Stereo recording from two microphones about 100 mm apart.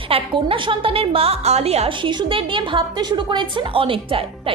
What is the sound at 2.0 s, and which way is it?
A woman's voice, 55° right (ahead or behind).